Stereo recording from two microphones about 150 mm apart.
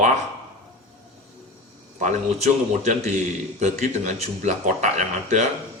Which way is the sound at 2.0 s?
55° right (ahead or behind).